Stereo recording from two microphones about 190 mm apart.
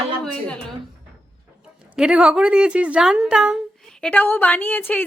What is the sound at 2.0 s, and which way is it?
A woman's voice, 5° right (ahead or behind).